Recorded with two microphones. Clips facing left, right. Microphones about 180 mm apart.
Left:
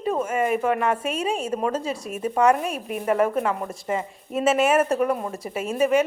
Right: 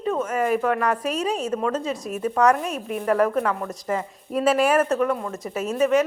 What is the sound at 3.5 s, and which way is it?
A woman's voice, 25° left (ahead or behind).